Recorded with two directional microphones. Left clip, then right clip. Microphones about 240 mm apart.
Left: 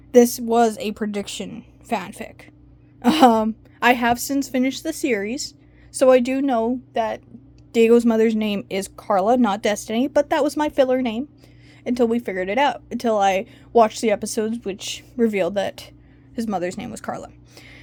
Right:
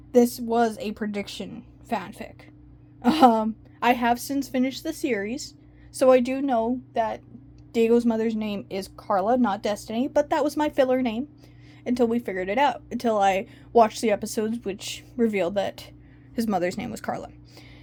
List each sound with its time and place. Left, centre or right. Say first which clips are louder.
0.1 s a woman's voice: left 5 dB; left
16.3 s speech: even; centre
17.5 s a sound: left 4 dB; centre